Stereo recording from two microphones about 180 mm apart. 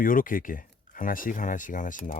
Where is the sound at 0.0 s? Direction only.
50° left (ahead or behind).